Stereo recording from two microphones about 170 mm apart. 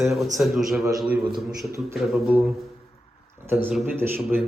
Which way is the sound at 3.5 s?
10° right (ahead or behind).